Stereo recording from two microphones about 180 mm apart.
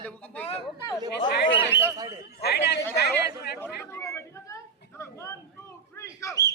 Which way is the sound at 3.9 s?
15° left (ahead or behind).